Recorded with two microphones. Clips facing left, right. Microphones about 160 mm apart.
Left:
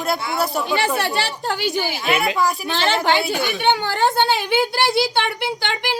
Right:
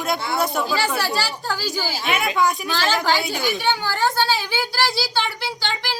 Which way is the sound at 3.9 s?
20° left (ahead or behind).